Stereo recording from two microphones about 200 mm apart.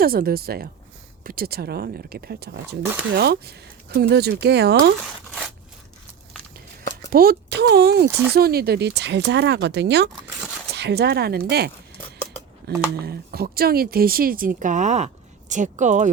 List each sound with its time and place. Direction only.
0.0 s a woman's voice: 50° right (ahead or behind)
7.1 s a woman's voice: 50° right (ahead or behind)